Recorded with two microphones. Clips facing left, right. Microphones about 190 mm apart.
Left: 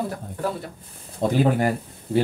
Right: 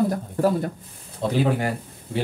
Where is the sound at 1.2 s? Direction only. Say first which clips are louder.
Left 3 dB; 45° left (ahead or behind).